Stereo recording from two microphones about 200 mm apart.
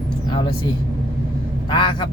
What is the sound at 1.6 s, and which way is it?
Speech, 25° left (ahead or behind).